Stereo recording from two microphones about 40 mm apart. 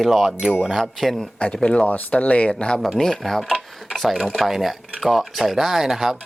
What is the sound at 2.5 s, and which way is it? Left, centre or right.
Speech, left.